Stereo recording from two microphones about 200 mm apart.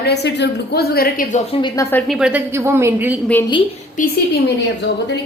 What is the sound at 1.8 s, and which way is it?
A woman's voice, 5° left (ahead or behind).